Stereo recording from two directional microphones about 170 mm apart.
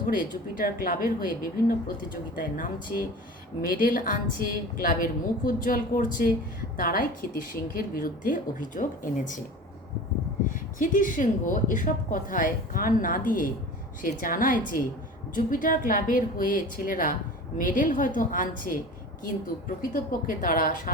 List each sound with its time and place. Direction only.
0.1 s a woman's voice: 55° left (ahead or behind)
10.5 s a woman's voice: 50° left (ahead or behind)